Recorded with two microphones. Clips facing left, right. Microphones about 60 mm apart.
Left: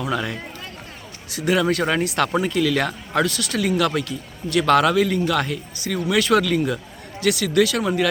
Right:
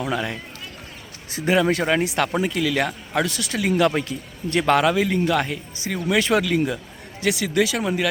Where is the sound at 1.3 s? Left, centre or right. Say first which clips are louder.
Right 1 dB; right.